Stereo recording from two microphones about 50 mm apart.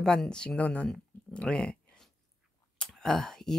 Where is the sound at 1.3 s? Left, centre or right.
Centre.